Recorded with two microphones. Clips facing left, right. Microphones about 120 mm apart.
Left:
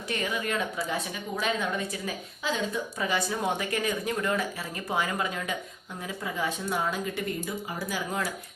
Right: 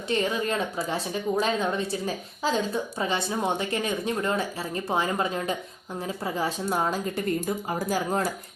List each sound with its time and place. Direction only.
0.1 s a woman's voice: 30° right (ahead or behind)